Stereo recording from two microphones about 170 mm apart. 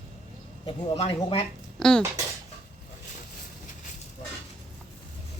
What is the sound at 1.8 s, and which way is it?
Speech, 5° left (ahead or behind).